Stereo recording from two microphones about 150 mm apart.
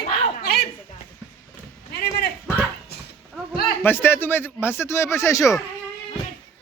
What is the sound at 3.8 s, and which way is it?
Speech, 15° left (ahead or behind).